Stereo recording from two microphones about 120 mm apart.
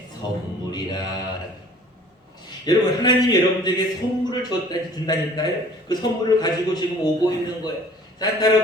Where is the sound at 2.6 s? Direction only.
35° left (ahead or behind).